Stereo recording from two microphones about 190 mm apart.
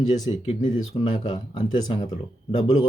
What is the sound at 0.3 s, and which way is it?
Speech, 25° left (ahead or behind).